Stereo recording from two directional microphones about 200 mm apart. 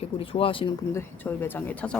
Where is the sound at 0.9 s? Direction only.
10° left (ahead or behind).